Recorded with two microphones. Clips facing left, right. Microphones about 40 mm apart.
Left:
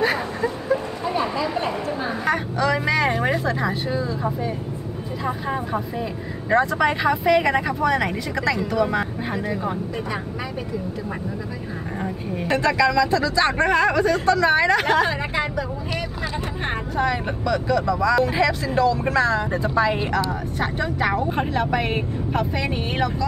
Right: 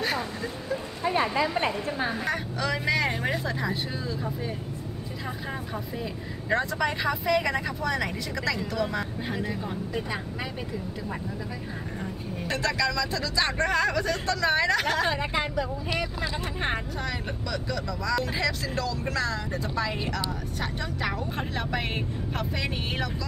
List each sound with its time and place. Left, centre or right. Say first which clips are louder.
1.0 s a sound: left 1 dB; right
2.6 s speech: left 6 dB; centre
3.1 s vehicle: left 7 dB; left
3.4 s speech: left 6 dB; centre
5.2 s speech: left 10 dB; centre
12.4 s speech: left 8 dB; centre
15.4 s speech: left 3 dB; centre
16.2 s speech: left 3 dB; centre
16.9 s speech: left 10 dB; centre
21.5 s speech: left 6 dB; centre